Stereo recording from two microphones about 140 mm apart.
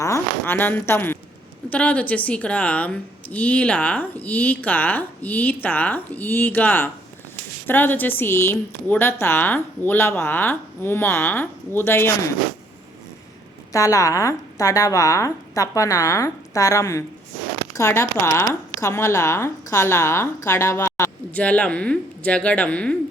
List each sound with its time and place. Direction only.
0.0 s a woman's voice: 20° left (ahead or behind)
13.7 s speech: 25° left (ahead or behind)
21.3 s a woman's voice: 10° left (ahead or behind)